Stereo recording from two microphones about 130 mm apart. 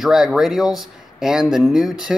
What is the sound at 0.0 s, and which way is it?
Speech, 5° right (ahead or behind).